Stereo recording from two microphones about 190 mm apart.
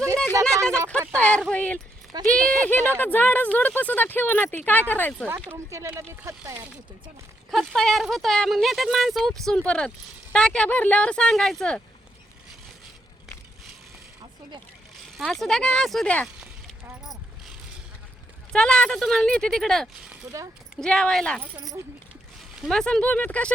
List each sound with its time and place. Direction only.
0.4 s a sound: 15° right (ahead or behind)
1.1 s speech: 5° left (ahead or behind)
5.5 s speech: 15° right (ahead or behind)
7.5 s speech: centre (ahead or behind)
15.0 s speech: centre (ahead or behind)
16.4 s a sound: 5° right (ahead or behind)
18.5 s speech: 5° left (ahead or behind)
20.1 s speech: 15° right (ahead or behind)
20.7 s speech: 5° left (ahead or behind)